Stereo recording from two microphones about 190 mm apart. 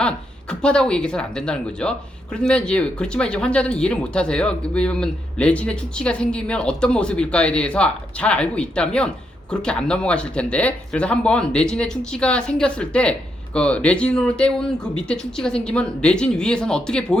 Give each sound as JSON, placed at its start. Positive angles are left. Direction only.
{"t": 0.6, "sound": "speech", "side_deg": 5}